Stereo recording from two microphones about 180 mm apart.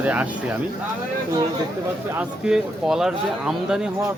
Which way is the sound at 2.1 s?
5° right (ahead or behind).